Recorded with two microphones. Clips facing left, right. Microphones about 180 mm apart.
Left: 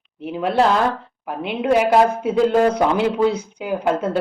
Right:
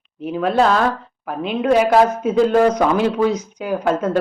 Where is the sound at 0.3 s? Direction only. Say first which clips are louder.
Right 1 dB; 15° left (ahead or behind).